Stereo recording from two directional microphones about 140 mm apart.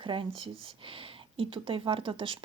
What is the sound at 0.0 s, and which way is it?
Speech, 35° right (ahead or behind).